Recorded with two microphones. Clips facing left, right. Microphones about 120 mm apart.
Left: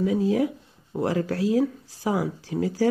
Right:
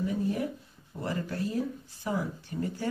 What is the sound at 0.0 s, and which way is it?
Speech, 90° left.